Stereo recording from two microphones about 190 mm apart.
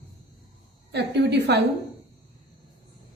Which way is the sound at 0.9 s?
65° right (ahead or behind).